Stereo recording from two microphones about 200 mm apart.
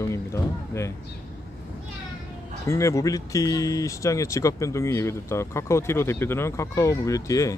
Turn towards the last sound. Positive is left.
turn(degrees=15)  # may be behind; listen again after turning